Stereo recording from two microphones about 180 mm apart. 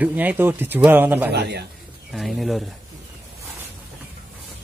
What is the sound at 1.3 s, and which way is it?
Speech, 70° right (ahead or behind).